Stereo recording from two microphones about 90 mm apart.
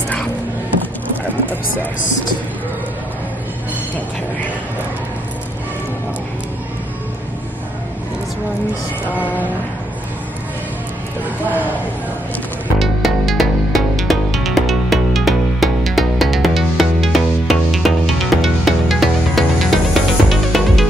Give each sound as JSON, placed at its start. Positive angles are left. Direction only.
{"t": 9.1, "sound": "a sound", "side_deg": 20}
{"t": 11.2, "sound": "speech", "side_deg": -20}
{"t": 12.7, "sound": "music", "side_deg": 0}